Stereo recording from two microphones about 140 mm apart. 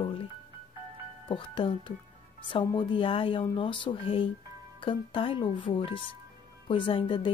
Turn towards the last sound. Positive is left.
turn(degrees=40)  # may be behind; listen again after turning